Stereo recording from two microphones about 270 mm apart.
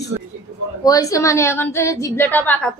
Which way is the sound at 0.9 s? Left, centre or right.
Centre.